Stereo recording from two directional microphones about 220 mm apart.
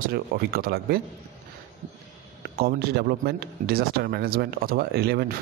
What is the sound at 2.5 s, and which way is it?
Speech, 45° right (ahead or behind).